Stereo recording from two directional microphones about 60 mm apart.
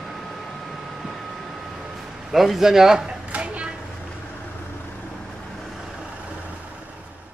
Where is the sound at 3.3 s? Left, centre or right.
Right.